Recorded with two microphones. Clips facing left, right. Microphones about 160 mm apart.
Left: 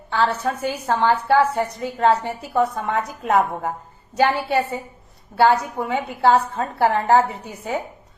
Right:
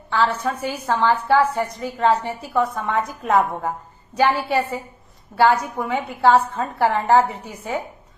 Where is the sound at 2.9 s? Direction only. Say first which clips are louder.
Right 1 dB; 30° left (ahead or behind).